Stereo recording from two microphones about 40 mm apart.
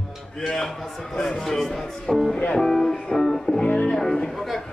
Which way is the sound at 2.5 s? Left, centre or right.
Centre.